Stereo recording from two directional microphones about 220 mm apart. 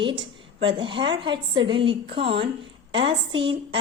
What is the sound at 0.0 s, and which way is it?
A woman's voice, 20° right (ahead or behind).